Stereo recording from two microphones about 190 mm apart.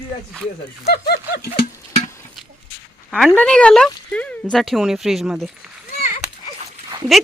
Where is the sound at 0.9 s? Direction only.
55° left (ahead or behind).